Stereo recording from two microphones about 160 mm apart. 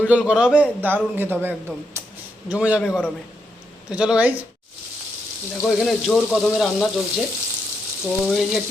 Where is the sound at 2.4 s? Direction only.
10° right (ahead or behind).